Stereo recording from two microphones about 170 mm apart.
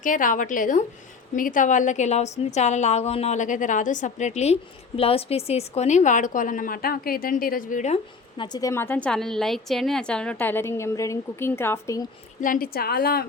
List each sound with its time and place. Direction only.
0.0 s a woman's voice: 50° left (ahead or behind)
8.4 s a woman's voice: 20° left (ahead or behind)
12.4 s a woman's voice: 55° left (ahead or behind)